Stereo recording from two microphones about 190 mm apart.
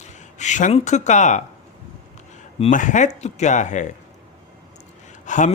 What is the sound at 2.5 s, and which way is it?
A man's voice, 35° left (ahead or behind).